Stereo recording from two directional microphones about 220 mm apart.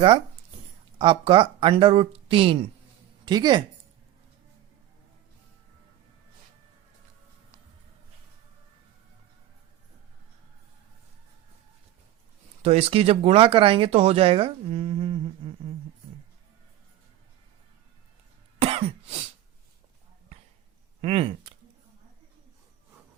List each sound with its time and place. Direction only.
0.9 s speech: 25° right (ahead or behind)
12.6 s speech: 25° right (ahead or behind)
21.0 s speech: 25° right (ahead or behind)